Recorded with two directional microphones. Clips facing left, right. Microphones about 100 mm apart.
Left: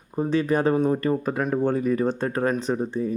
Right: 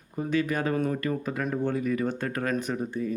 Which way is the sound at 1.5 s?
40° left (ahead or behind).